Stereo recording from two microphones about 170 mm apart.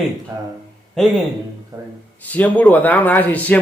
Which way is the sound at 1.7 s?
20° right (ahead or behind).